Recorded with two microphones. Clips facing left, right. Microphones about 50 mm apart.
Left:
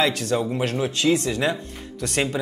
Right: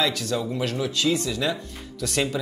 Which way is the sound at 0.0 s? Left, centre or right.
Left.